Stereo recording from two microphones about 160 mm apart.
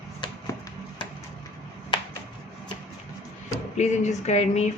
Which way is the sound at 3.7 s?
45° left (ahead or behind).